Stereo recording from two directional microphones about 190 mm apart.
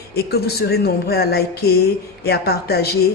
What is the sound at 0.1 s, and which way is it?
Speech, 55° left (ahead or behind).